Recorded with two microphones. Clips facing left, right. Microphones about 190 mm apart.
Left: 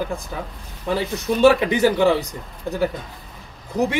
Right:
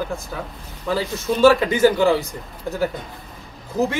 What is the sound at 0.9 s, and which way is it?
Speech, 20° left (ahead or behind).